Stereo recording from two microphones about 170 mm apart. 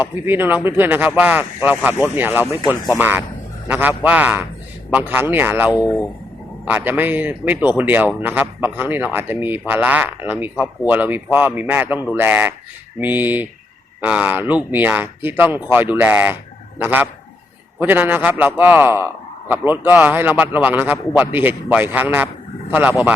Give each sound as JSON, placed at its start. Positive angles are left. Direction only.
{"t": 0.3, "sound": "a man's voice", "side_deg": -10}
{"t": 5.7, "sound": "speech", "side_deg": 20}
{"t": 6.7, "sound": "a man's voice", "side_deg": -10}